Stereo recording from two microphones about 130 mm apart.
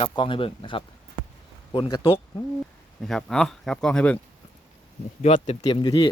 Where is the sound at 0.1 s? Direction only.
40° left (ahead or behind).